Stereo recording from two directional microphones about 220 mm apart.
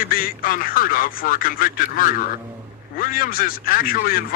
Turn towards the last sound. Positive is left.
turn(degrees=40)  # may be behind; listen again after turning